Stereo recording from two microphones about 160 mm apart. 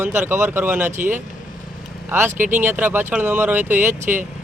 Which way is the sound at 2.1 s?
15° right (ahead or behind).